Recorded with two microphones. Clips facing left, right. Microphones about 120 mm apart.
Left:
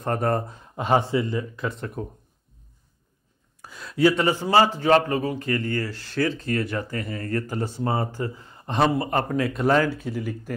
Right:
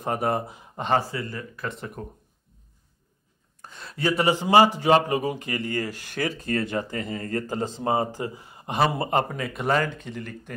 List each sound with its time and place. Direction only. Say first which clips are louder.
0.0 s speech: left 1 dB; 5° right (ahead or behind)
0.9 s a man's voice: left 4 dB; 20° left (ahead or behind)
1.7 s speech: left 3 dB; centre (ahead or behind)
3.6 s speech: left 7 dB; centre (ahead or behind)
4.2 s speech: right 1 dB; 15° right (ahead or behind)
8.9 s speech: even; 25° right (ahead or behind)
9.3 s speech: left 4 dB; centre (ahead or behind)